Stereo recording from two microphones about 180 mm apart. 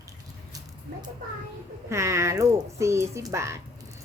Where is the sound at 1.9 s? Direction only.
15° right (ahead or behind).